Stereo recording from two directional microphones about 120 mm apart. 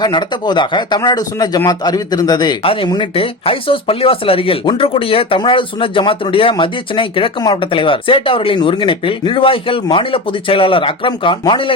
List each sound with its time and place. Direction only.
0.0 s speech: 35° left (ahead or behind)